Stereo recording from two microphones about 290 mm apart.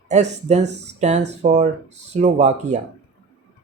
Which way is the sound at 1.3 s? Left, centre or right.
Right.